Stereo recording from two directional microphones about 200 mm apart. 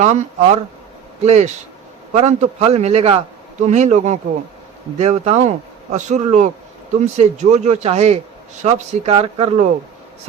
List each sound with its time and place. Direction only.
0.0 s speech: 35° right (ahead or behind)